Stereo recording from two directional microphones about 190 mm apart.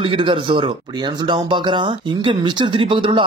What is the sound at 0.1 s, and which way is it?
Speech, 25° right (ahead or behind).